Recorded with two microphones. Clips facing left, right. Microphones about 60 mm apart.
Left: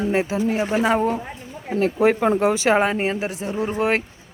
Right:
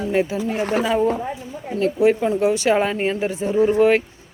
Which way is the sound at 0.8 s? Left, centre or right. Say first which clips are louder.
Right 2 dB; left.